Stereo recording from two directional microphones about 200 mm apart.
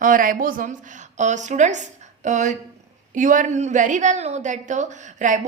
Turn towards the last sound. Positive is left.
turn(degrees=-40)  # may be behind; listen again after turning